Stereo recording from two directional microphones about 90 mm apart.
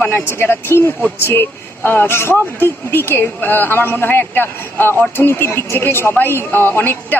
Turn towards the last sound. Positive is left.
turn(degrees=25)  # may be behind; listen again after turning